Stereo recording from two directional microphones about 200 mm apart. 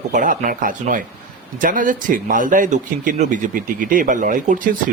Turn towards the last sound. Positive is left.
turn(degrees=-40)  # may be behind; listen again after turning